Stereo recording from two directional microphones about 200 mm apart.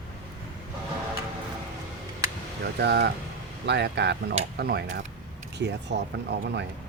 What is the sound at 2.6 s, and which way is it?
Speech, 55° right (ahead or behind).